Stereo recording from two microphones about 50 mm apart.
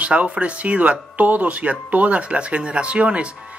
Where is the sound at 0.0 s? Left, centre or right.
Right.